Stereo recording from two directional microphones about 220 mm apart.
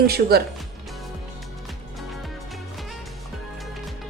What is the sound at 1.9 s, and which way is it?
Music, centre (ahead or behind).